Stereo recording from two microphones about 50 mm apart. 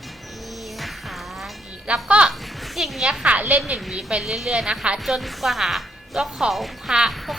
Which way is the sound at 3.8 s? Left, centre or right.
Centre.